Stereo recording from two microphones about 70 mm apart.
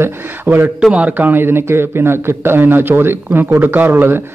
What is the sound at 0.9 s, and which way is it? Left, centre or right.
A man's voice, right.